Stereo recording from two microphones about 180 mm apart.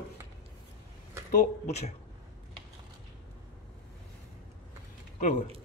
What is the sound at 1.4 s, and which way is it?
Speech, 35° left (ahead or behind).